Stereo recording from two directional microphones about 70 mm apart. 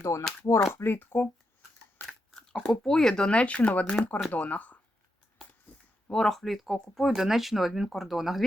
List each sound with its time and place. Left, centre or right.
0.0 s speech: left
0.7 s speech: left
2.3 s speech: centre
5.7 s a sound: left
6.1 s speech: centre